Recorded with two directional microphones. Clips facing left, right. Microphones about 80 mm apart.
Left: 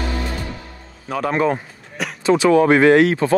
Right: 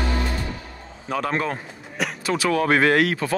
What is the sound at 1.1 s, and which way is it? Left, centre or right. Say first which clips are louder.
Speech: left 5 dB; centre.